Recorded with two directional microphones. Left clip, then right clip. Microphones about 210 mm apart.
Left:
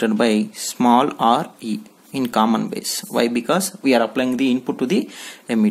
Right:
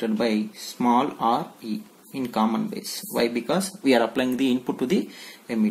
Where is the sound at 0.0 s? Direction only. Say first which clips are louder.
Left 6 dB; 40° left (ahead or behind).